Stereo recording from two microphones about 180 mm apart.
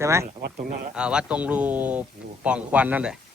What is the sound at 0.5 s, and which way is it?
Speech, 50° right (ahead or behind).